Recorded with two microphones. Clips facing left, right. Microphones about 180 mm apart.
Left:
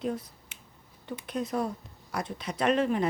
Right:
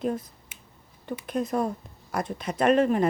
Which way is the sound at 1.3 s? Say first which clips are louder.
Right 4 dB; 50° right (ahead or behind).